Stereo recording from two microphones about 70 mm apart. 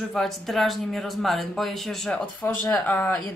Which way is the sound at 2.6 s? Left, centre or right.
Left.